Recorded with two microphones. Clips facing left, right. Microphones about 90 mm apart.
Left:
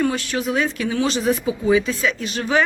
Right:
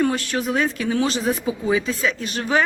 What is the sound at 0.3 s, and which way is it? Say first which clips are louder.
Speech: even; 40° right (ahead or behind).